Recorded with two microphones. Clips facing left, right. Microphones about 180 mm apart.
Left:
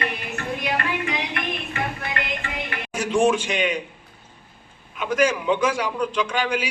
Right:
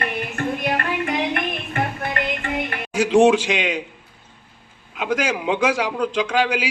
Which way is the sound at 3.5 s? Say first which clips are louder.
Right 1 dB; 90° right.